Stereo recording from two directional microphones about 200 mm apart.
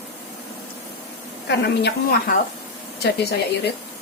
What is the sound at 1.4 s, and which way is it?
Speech, 55° left (ahead or behind).